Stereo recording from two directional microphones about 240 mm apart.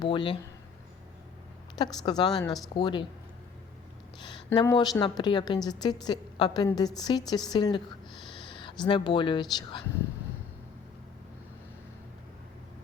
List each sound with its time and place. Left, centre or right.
0.0 s speech: centre
1.7 s a woman's voice: centre
4.2 s a woman's voice: centre